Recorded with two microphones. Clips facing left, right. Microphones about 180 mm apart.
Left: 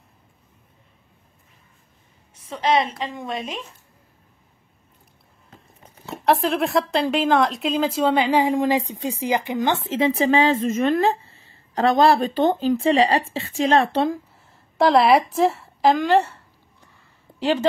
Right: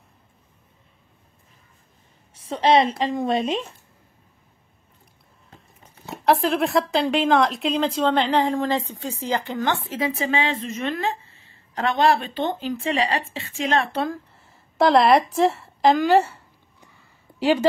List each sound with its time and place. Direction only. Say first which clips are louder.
2.4 s a woman's voice: right 3 dB; 30° right (ahead or behind)
6.2 s a woman's voice: even; centre (ahead or behind); by 14.1 s 30° left (ahead or behind)
14.3 s a woman's voice: even; centre (ahead or behind)
17.4 s a woman's voice: right 2 dB; 10° right (ahead or behind)